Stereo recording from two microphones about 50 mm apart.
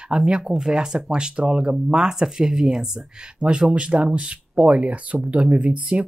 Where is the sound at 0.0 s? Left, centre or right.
Centre.